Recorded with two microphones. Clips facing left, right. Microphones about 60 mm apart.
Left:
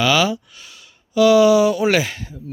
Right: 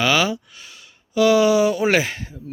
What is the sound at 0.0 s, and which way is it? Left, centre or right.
Speech, right.